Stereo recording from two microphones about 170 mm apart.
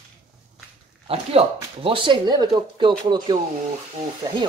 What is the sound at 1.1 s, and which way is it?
Speech, 35° right (ahead or behind).